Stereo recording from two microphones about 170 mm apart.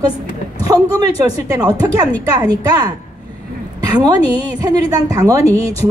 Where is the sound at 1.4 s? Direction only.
20° right (ahead or behind).